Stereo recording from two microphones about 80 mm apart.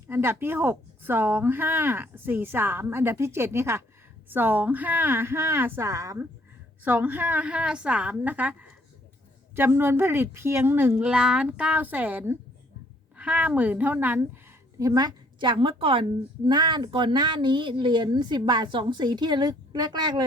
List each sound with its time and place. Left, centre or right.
0.1 s speech: right
6.8 s speech: right
9.6 s a woman's voice: right
11.0 s speech: centre
14.8 s speech: right
16.5 s speech: right